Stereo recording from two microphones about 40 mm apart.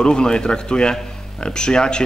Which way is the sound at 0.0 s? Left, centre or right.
Left.